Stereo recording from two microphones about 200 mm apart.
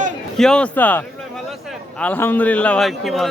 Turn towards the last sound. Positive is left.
turn(degrees=0)  # may be behind; listen again after turning